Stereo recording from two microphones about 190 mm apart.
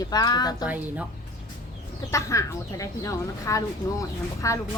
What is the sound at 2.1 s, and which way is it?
Speech, 15° left (ahead or behind).